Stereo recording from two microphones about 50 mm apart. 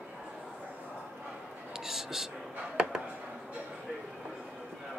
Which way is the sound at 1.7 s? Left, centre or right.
Centre.